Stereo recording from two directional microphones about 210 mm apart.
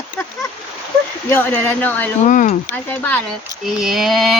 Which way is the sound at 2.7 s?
10° left (ahead or behind).